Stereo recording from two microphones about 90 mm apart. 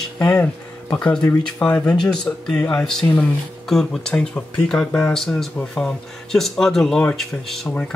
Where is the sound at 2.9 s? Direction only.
5° left (ahead or behind).